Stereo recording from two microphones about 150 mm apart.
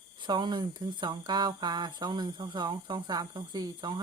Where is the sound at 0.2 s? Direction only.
30° right (ahead or behind).